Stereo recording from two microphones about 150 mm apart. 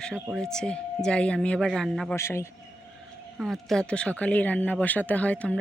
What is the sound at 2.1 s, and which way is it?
Speech, 20° left (ahead or behind).